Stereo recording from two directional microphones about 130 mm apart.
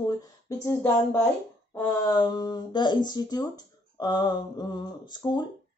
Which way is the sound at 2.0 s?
30° left (ahead or behind).